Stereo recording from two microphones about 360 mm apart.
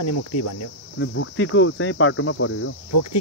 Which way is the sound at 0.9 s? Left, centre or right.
Left.